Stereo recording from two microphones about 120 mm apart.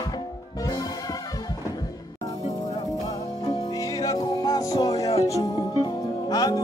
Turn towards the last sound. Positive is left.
turn(degrees=30)  # may be behind; listen again after turning